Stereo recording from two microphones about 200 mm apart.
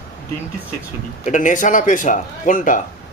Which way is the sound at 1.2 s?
40° left (ahead or behind).